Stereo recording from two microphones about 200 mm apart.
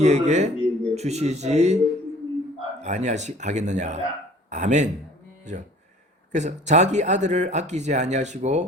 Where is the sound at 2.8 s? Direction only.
35° right (ahead or behind).